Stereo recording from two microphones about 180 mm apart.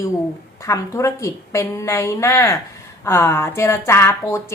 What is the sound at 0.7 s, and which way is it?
A woman's voice, 15° left (ahead or behind).